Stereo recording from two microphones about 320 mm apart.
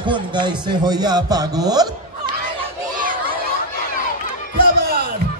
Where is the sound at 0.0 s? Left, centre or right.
Centre.